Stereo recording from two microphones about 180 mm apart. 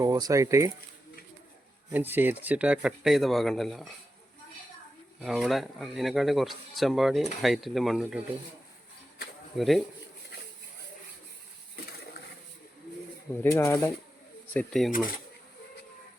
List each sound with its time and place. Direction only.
0.0 s speech: 20° right (ahead or behind)
1.9 s speech: 10° right (ahead or behind)
5.2 s speech: centre (ahead or behind)
9.6 s speech: centre (ahead or behind)
13.4 s speech: 15° left (ahead or behind)
14.5 s speech: 5° left (ahead or behind)